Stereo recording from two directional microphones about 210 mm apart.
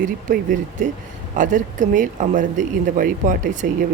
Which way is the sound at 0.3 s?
40° right (ahead or behind).